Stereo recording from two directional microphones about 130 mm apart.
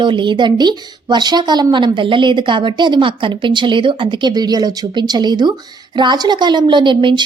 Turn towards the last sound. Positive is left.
turn(degrees=-40)  # may be behind; listen again after turning